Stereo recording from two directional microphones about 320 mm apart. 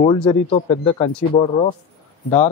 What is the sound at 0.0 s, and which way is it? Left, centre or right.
Speech, centre.